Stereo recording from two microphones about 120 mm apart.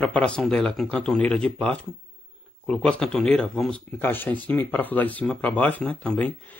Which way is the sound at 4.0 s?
15° left (ahead or behind).